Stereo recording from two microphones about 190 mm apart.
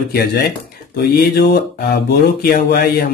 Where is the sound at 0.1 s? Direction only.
55° left (ahead or behind).